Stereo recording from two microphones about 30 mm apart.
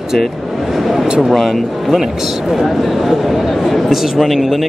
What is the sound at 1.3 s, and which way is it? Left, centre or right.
Speech, centre.